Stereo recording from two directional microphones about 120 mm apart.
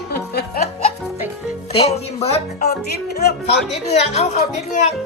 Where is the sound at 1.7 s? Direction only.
55° left (ahead or behind).